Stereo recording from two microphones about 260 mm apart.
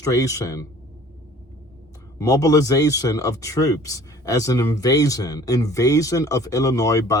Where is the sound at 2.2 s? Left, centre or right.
Centre.